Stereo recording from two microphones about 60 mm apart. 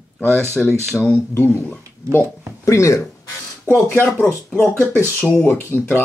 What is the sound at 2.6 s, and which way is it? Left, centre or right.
Speech, left.